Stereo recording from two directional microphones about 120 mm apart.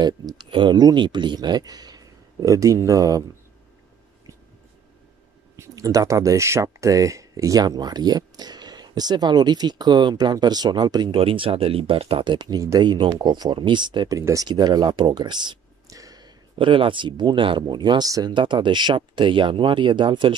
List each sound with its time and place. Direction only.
0.0 s speech: 35° right (ahead or behind)
5.6 s speech: 30° right (ahead or behind)
11.1 s speech: 50° right (ahead or behind); by 16.3 s 30° right (ahead or behind)
16.5 s speech: 45° right (ahead or behind)